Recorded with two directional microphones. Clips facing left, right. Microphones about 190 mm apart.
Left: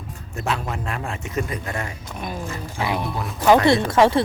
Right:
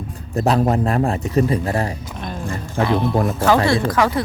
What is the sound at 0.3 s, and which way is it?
Speech, 40° right (ahead or behind).